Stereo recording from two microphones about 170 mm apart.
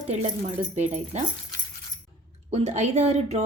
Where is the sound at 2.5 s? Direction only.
40° right (ahead or behind).